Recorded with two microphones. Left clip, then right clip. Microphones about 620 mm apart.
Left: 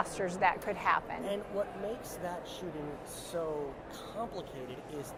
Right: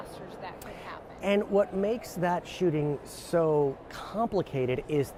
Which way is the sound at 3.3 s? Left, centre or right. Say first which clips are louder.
Right 11 dB; right.